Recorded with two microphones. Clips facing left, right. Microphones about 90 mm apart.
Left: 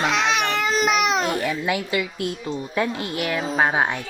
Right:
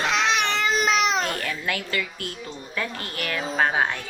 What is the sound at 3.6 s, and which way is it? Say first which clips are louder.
Speech: left 1 dB; 15° left (ahead or behind).